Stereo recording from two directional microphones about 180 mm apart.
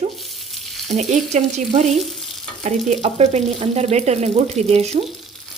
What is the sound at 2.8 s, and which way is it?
Speech, 35° right (ahead or behind).